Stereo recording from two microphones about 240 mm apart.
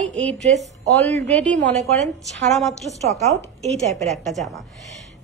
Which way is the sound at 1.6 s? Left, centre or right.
Right.